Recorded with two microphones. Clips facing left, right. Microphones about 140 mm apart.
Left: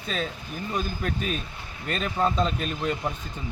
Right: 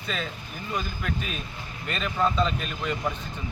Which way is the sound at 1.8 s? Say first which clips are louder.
Left 1 dB; 45° left (ahead or behind).